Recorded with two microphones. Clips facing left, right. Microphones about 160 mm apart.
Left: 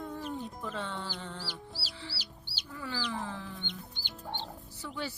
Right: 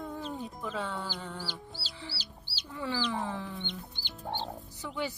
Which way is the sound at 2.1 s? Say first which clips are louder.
Right 1 dB; centre (ahead or behind).